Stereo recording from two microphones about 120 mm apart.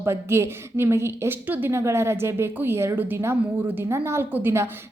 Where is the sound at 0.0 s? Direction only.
20° right (ahead or behind).